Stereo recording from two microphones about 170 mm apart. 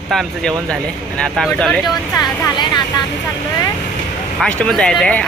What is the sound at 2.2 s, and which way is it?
Speech, 25° left (ahead or behind).